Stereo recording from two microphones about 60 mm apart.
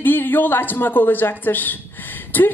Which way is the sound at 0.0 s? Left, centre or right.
Left.